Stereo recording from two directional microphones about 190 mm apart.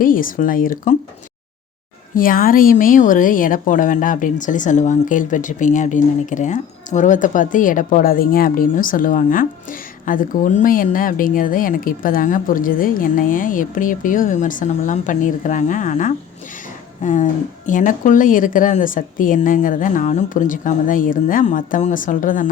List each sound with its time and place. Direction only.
0.0 s speech: 45° left (ahead or behind)
2.1 s speech: 45° left (ahead or behind)